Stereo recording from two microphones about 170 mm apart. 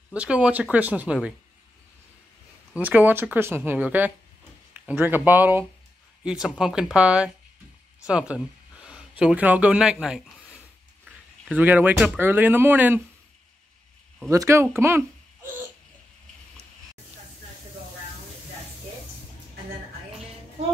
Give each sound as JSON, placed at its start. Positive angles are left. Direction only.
{"t": 0.1, "sound": "speech", "side_deg": -5}
{"t": 2.7, "sound": "speech", "side_deg": -10}
{"t": 11.5, "sound": "speech", "side_deg": -10}
{"t": 14.3, "sound": "speech", "side_deg": -15}